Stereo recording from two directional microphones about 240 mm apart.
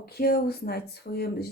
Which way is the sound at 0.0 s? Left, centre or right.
Left.